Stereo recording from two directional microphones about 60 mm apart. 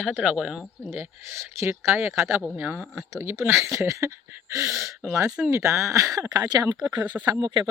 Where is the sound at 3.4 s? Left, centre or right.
Right.